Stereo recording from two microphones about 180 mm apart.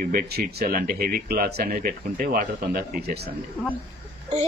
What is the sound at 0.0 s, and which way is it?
Speech, 55° right (ahead or behind).